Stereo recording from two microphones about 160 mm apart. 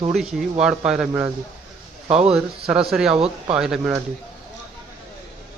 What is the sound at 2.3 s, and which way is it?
Speech, 5° right (ahead or behind).